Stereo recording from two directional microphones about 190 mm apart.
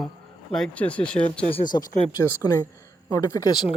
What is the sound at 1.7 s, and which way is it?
A woman's voice, 20° left (ahead or behind).